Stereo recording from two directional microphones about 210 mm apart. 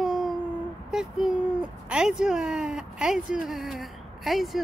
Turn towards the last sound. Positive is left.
turn(degrees=0)  # may be behind; listen again after turning